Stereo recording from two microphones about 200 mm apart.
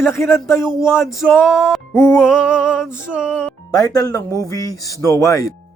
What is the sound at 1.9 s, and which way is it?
Speech, 15° left (ahead or behind).